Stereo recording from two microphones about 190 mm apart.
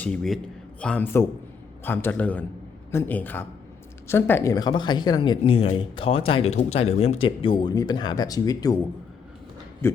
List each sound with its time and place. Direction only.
0.0 s a man's voice: 5° left (ahead or behind); by 8.8 s 20° left (ahead or behind)
9.8 s speech: 10° left (ahead or behind)